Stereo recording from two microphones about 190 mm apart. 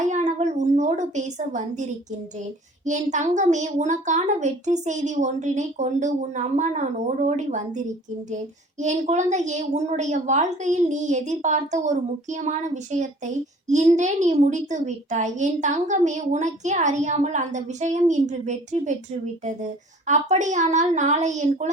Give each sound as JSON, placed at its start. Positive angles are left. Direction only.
{"t": 0.0, "sound": "a sound", "side_deg": -40}
{"t": 2.8, "sound": "a woman's voice", "side_deg": -40}
{"t": 20.1, "sound": "a woman's voice", "side_deg": -40}